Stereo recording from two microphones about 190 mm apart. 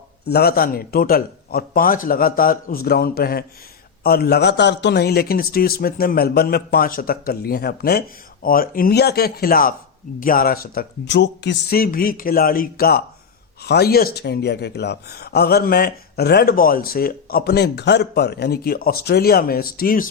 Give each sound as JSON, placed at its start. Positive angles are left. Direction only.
{"t": 0.3, "sound": "a man's voice", "side_deg": 55}